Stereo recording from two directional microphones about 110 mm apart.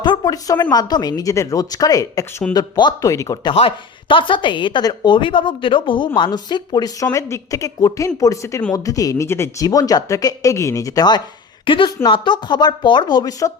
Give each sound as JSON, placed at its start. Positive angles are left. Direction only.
{"t": 0.0, "sound": "speech", "side_deg": 40}
{"t": 4.1, "sound": "a woman's voice", "side_deg": 50}
{"t": 11.6, "sound": "a woman's voice", "side_deg": 50}